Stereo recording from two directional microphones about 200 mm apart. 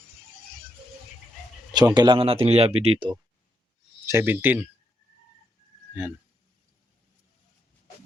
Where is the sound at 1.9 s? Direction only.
25° right (ahead or behind).